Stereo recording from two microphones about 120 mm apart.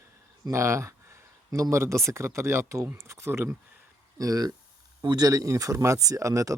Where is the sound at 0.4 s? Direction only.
25° right (ahead or behind).